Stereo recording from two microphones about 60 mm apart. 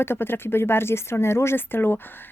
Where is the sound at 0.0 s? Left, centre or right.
Left.